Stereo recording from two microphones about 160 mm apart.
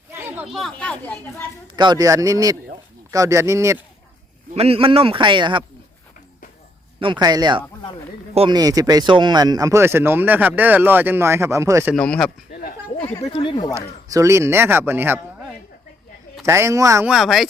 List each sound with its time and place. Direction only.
0.1 s chatter: 15° right (ahead or behind)
0.4 s speech: centre (ahead or behind)
1.7 s a man's voice: 25° right (ahead or behind)
4.5 s a man's voice: 40° right (ahead or behind)
7.0 s a man's voice: 30° right (ahead or behind)
11.9 s speech: 5° left (ahead or behind)
13.2 s speech: 35° left (ahead or behind)
13.7 s speech: 20° right (ahead or behind)
16.5 s a man's voice: 15° right (ahead or behind)
17.1 s speech: centre (ahead or behind)